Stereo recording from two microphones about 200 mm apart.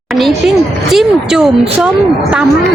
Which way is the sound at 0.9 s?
5° right (ahead or behind).